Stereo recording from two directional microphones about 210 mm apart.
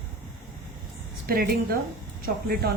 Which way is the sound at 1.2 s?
45° right (ahead or behind).